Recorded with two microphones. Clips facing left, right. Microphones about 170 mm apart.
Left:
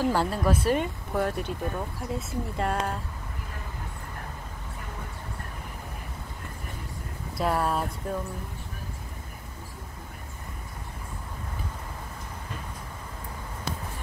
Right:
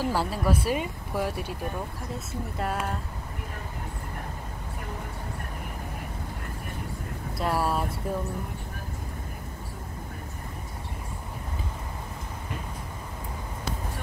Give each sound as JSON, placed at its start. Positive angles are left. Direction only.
{"t": 0.0, "sound": "speech", "side_deg": -5}
{"t": 7.3, "sound": "speech", "side_deg": 0}